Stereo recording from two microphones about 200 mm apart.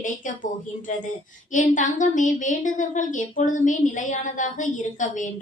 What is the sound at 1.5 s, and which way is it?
A woman's voice, 40° left (ahead or behind).